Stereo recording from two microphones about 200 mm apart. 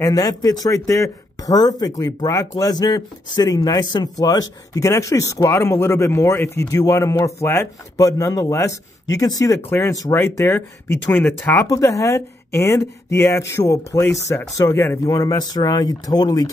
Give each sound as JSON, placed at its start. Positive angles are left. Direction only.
{"t": 0.0, "sound": "speech", "side_deg": 15}